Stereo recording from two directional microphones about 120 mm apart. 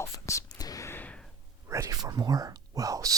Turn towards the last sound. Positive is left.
turn(degrees=-30)  # may be behind; listen again after turning